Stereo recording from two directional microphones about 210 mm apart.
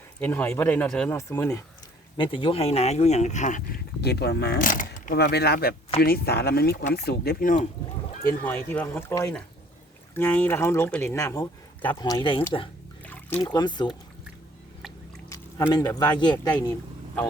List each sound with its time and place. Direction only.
0.2 s speech: 10° left (ahead or behind)
2.1 s speech: 25° left (ahead or behind); by 7.7 s 40° left (ahead or behind)
8.3 s speech: 10° left (ahead or behind); by 12.5 s 25° left (ahead or behind)
13.1 s a sound: 10° left (ahead or behind)
13.5 s speech: 20° left (ahead or behind)
15.3 s speech: 15° left (ahead or behind)